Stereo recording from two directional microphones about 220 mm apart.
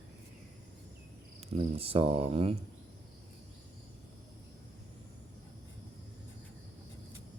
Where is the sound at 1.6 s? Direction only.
25° right (ahead or behind).